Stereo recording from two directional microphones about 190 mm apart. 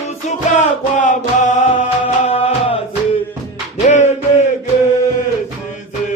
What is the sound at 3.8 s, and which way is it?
Music, 40° left (ahead or behind).